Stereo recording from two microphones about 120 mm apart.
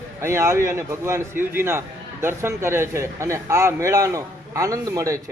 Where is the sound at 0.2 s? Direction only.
20° right (ahead or behind).